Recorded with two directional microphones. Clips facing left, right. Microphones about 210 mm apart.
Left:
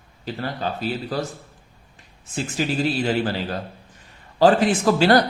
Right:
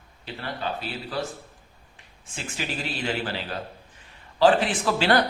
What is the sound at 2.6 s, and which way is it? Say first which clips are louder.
Speech: left 9 dB; 40° left (ahead or behind).